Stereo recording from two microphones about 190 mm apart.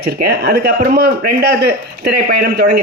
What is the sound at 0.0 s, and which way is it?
A man's voice, 60° right (ahead or behind).